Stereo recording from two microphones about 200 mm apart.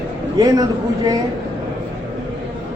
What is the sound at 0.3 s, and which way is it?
Speech, 20° right (ahead or behind).